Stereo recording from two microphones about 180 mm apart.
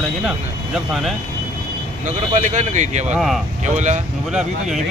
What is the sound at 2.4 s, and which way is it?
Speech, 45° right (ahead or behind).